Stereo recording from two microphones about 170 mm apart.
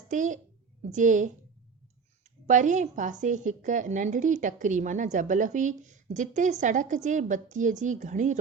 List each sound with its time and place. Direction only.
0.1 s a woman's voice: 50° right (ahead or behind)
2.5 s a woman's voice: 45° right (ahead or behind)